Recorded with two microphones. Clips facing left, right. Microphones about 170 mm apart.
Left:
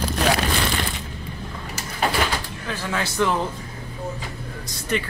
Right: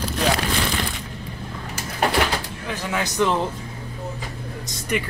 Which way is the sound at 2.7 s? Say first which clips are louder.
Right 1 dB; 15° right (ahead or behind).